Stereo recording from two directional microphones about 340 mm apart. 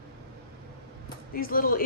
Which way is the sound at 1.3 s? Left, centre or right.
Left.